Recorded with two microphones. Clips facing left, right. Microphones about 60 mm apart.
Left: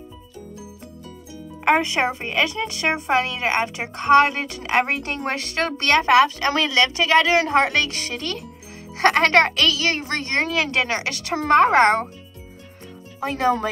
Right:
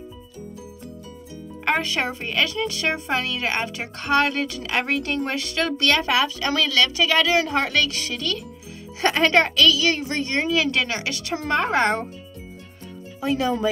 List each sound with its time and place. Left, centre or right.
1.6 s speech: left
9.0 s speech: left
13.2 s speech: left